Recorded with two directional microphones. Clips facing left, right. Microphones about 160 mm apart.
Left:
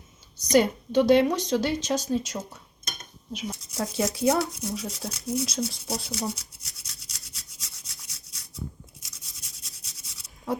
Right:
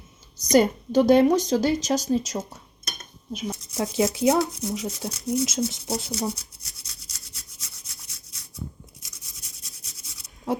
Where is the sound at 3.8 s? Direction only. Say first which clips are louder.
Right 3 dB; 25° right (ahead or behind).